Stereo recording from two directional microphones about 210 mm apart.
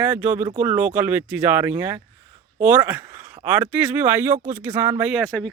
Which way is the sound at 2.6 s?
10° right (ahead or behind).